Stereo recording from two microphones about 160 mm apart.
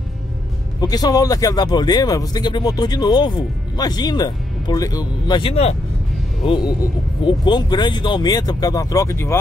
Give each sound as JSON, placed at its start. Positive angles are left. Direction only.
{"t": 0.7, "sound": "speech", "side_deg": 25}
{"t": 5.5, "sound": "speech", "side_deg": 40}
{"t": 6.4, "sound": "speech", "side_deg": 30}